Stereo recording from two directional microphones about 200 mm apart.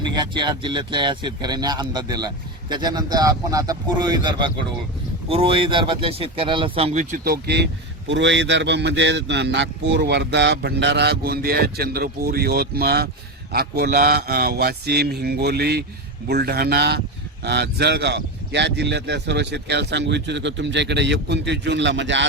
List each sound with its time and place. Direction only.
0.0 s speech: 20° right (ahead or behind); by 22.3 s 65° right (ahead or behind)